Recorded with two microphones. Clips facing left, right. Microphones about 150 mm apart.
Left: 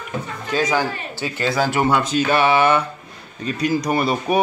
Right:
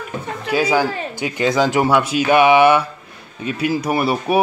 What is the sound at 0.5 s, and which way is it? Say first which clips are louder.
Speech: right 3 dB; 10° right (ahead or behind).